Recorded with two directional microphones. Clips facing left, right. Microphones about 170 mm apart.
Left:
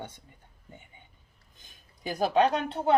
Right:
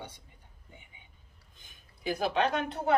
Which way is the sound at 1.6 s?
45° left (ahead or behind).